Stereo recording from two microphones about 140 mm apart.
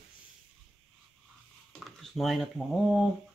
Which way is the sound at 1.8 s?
Centre (ahead or behind).